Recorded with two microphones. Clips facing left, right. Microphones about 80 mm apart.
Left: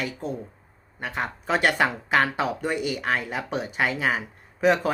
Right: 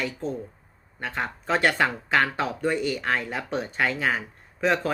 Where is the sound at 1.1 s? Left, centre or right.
Centre.